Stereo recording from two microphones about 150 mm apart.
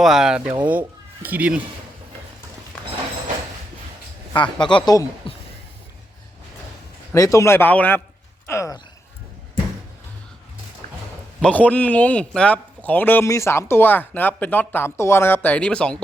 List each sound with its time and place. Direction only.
0.0 s speech: centre (ahead or behind)
4.6 s speech: 30° left (ahead or behind)
7.1 s a man's voice: 20° left (ahead or behind)
11.4 s a man's voice: 10° left (ahead or behind)